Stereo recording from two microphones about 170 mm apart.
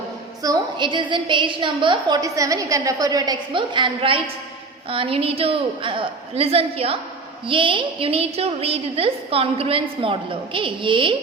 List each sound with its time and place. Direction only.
0.4 s a woman's voice: 25° right (ahead or behind)